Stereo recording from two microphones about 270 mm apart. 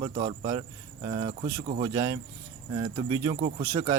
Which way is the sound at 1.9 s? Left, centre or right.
Centre.